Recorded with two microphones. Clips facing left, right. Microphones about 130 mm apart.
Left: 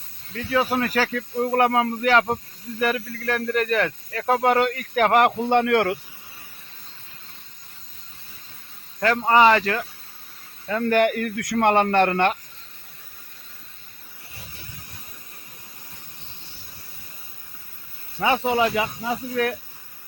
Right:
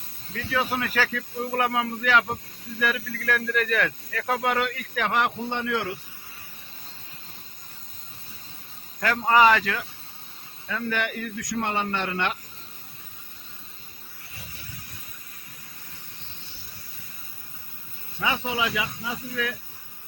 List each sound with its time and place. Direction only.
0.8 s speech: 40° left (ahead or behind); by 6.0 s 60° left (ahead or behind)
9.0 s speech: 30° left (ahead or behind); by 12.4 s 50° left (ahead or behind)
18.4 s speech: 45° left (ahead or behind)